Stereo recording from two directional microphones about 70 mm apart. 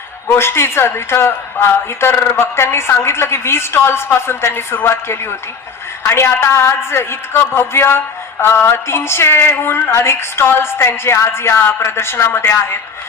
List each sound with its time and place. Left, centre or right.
0.3 s a woman's voice: left